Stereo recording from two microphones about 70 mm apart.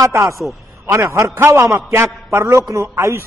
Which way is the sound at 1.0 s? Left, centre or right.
Right.